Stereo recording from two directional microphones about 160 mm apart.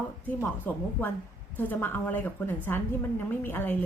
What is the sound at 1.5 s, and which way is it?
A woman's voice, 10° left (ahead or behind).